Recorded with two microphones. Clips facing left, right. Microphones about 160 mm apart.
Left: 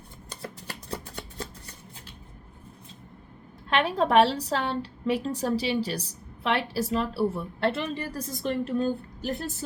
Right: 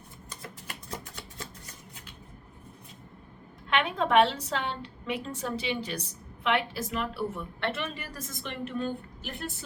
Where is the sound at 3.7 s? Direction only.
35° left (ahead or behind).